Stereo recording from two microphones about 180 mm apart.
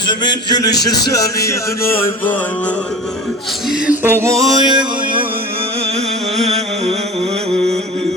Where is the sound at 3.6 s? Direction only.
5° right (ahead or behind); by 5.2 s 25° right (ahead or behind).